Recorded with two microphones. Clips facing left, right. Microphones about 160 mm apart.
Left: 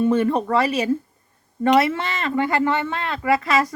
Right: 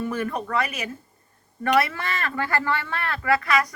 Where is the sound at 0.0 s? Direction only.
25° left (ahead or behind).